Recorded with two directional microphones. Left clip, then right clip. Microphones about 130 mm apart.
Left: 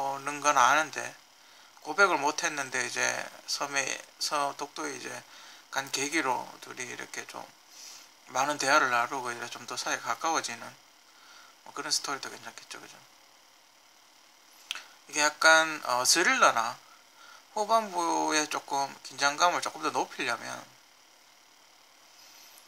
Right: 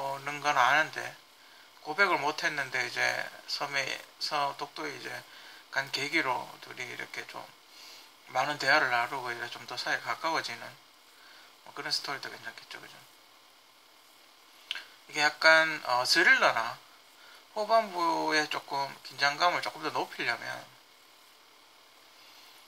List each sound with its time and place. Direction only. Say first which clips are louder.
0.0 s a sound: left 3 dB; 35° left (ahead or behind)
1.9 s a man's voice: left 2 dB; 35° left (ahead or behind)
11.7 s a man's voice: left 2 dB; 35° left (ahead or behind)
15.0 s a man's voice: left 1 dB; 35° left (ahead or behind)